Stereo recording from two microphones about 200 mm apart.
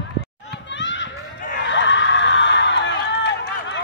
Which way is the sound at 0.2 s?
60° left (ahead or behind).